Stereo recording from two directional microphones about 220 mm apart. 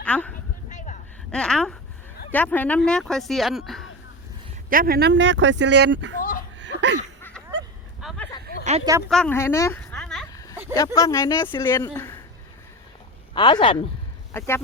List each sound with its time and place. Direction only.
0.0 s speech: 5° left (ahead or behind)
1.3 s speech: 5° left (ahead or behind)
4.7 s speech: 40° right (ahead or behind)
6.6 s laughter: 55° right (ahead or behind)
7.2 s a sound: 10° left (ahead or behind)
8.8 s speech: 15° right (ahead or behind)
9.0 s speech: 5° left (ahead or behind)
9.8 s a sound: centre (ahead or behind)
10.3 s a sound: 15° left (ahead or behind)
10.8 s speech: 15° left (ahead or behind)
13.3 s speech: 20° left (ahead or behind)
14.3 s speech: 10° left (ahead or behind)